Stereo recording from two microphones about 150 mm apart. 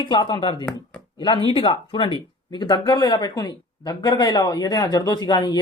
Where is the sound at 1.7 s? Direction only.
35° left (ahead or behind).